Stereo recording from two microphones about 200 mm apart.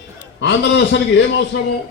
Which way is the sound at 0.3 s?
60° left (ahead or behind).